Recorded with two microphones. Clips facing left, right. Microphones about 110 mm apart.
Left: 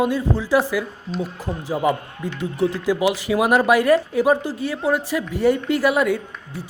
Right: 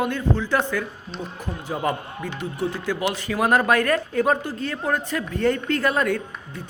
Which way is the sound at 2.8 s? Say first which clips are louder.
Left 5 dB; 10° left (ahead or behind).